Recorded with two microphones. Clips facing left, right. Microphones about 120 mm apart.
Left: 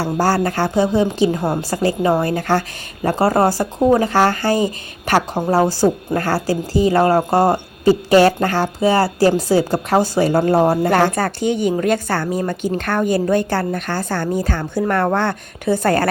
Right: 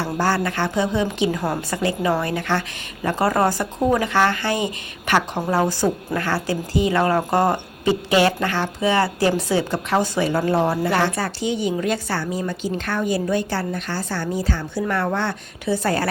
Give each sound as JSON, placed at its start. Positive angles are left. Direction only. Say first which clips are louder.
{"t": 0.0, "sound": "a woman's voice", "louder": "left 4 dB", "side_deg": 40}